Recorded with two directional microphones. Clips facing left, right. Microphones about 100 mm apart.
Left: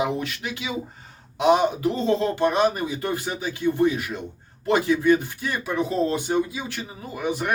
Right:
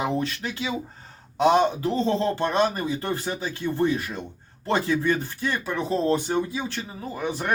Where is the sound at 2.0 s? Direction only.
30° right (ahead or behind).